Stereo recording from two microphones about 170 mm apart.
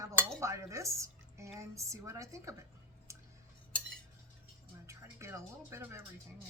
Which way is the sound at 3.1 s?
15° right (ahead or behind).